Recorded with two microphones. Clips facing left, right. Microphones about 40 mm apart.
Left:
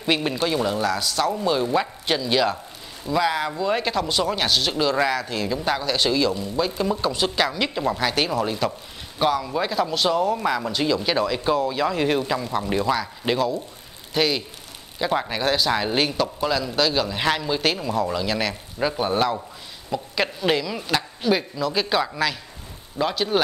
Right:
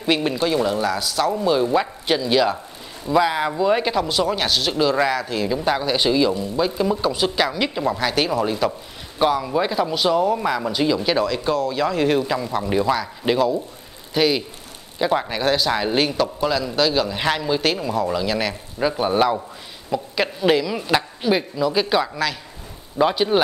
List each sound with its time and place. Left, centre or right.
0.0 s speech: centre
22.9 s speech: centre